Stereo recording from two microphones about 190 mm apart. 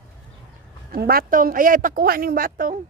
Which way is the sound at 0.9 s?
50° right (ahead or behind).